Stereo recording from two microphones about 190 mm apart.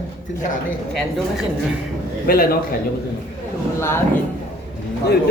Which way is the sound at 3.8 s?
15° left (ahead or behind).